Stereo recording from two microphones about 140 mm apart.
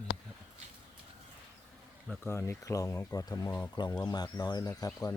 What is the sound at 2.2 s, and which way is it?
Speech, 20° left (ahead or behind).